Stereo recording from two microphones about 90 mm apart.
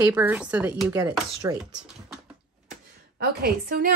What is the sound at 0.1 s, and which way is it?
Speech, 20° right (ahead or behind).